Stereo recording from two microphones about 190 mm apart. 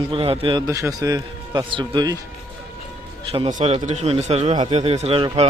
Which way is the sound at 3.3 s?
30° right (ahead or behind).